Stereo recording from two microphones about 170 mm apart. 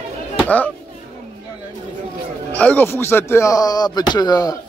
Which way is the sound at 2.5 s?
10° left (ahead or behind).